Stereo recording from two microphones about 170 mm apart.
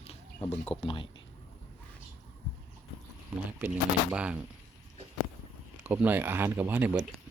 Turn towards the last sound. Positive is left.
turn(degrees=-10)  # may be behind; listen again after turning